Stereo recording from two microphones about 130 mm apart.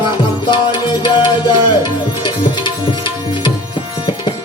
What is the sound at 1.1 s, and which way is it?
Music, 40° left (ahead or behind).